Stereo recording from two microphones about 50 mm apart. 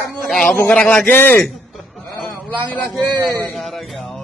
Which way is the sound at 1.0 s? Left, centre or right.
Left.